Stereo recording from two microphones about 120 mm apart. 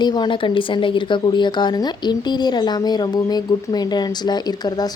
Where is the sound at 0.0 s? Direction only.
40° left (ahead or behind).